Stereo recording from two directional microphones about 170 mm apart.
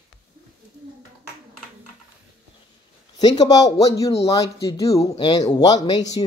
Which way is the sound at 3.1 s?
25° left (ahead or behind).